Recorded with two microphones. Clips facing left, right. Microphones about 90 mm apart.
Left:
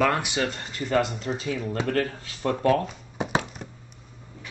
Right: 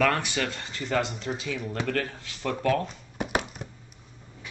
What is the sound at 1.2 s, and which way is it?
Speech, 40° left (ahead or behind).